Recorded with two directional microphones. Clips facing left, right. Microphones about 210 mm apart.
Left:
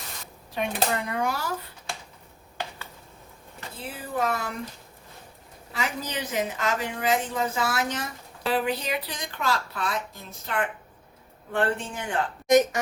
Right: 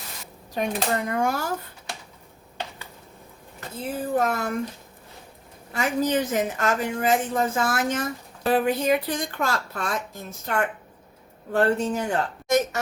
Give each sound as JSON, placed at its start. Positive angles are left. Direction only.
{"t": 0.5, "sound": "speech", "side_deg": -40}
{"t": 3.9, "sound": "speech", "side_deg": -45}
{"t": 5.7, "sound": "speech", "side_deg": -50}
{"t": 12.5, "sound": "speech", "side_deg": 20}